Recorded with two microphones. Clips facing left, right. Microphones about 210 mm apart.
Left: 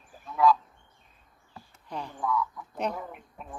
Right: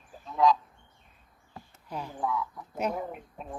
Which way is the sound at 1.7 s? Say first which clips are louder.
Even; 5° right (ahead or behind).